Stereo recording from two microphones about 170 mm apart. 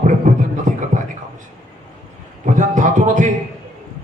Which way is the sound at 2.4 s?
45° right (ahead or behind).